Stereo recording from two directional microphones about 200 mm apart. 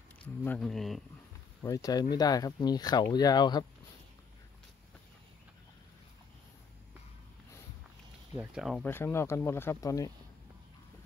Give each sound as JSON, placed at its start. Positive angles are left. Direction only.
{"t": 0.4, "sound": "speech", "side_deg": 5}
{"t": 1.6, "sound": "speech", "side_deg": 15}
{"t": 8.4, "sound": "speech", "side_deg": 0}